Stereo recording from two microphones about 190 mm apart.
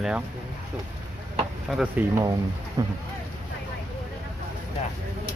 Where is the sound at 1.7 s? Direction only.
Centre (ahead or behind).